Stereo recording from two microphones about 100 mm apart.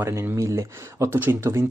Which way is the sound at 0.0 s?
25° right (ahead or behind).